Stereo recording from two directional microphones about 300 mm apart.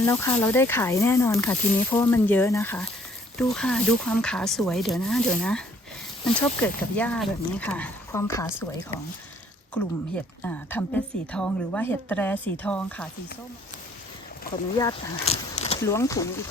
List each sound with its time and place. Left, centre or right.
0.0 s a woman's voice: centre
10.4 s a woman's voice: centre
14.8 s speech: centre
15.8 s speech: centre